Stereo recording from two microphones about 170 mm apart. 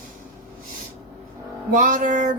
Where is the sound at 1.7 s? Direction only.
50° right (ahead or behind).